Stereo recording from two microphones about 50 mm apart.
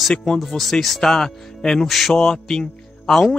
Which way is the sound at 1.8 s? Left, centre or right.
Centre.